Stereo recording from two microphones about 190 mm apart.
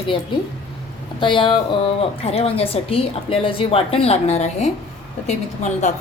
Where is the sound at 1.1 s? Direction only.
25° left (ahead or behind).